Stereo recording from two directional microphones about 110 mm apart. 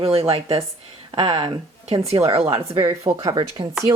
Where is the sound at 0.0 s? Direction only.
60° right (ahead or behind).